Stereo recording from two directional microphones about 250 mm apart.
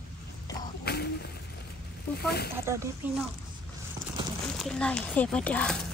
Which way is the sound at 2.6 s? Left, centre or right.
Centre.